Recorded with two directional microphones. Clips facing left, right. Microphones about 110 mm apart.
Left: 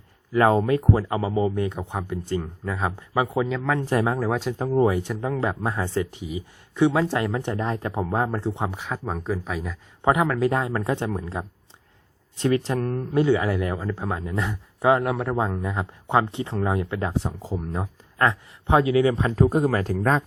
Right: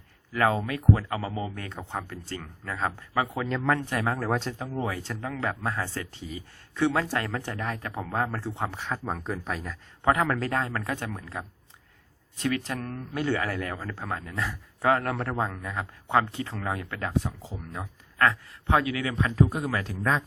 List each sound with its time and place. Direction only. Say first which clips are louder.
0.5 s speech: left 5 dB; 35° left (ahead or behind)
3.4 s speech: left 1 dB; 5° left (ahead or behind)
3.8 s speech: left 6 dB; 25° left (ahead or behind)
4.3 s speech: left 3 dB; 5° left (ahead or behind)
4.5 s speech: left 10 dB; 45° left (ahead or behind)
4.8 s a man's voice: left 10 dB; 25° left (ahead or behind)
13.2 s a man's voice: left 2 dB; 15° left (ahead or behind)
17.4 s speech: left 10 dB; 45° left (ahead or behind)
17.7 s speech: left 1 dB; 20° left (ahead or behind)
19.3 s speech: left 5 dB; 40° left (ahead or behind)